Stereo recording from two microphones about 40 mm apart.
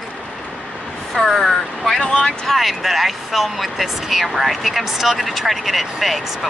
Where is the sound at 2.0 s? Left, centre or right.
Left.